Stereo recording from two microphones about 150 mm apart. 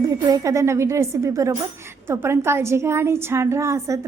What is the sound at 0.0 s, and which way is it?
Speech, 25° right (ahead or behind).